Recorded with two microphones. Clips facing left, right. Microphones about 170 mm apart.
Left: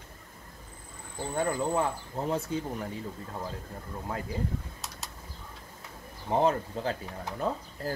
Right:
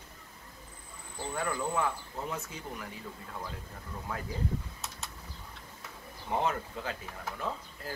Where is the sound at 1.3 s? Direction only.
30° left (ahead or behind).